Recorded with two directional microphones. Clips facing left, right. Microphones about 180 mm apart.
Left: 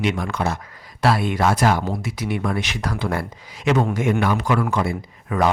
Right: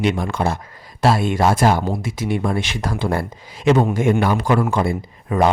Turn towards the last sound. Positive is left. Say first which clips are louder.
# right 3 dB
turn(degrees=-30)  # may be behind; listen again after turning